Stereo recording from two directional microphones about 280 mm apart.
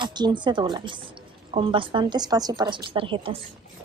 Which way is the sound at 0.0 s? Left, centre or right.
Centre.